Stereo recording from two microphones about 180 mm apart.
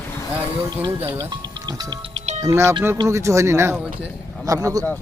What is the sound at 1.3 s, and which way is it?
Speech, 25° right (ahead or behind).